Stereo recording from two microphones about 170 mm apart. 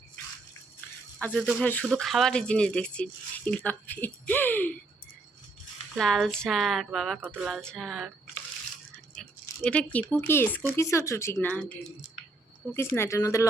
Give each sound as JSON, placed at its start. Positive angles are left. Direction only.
{"t": 1.2, "sound": "speech", "side_deg": 5}
{"t": 6.0, "sound": "speech", "side_deg": 0}
{"t": 9.6, "sound": "speech", "side_deg": 5}